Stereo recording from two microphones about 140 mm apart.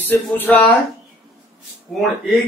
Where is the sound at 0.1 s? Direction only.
15° left (ahead or behind).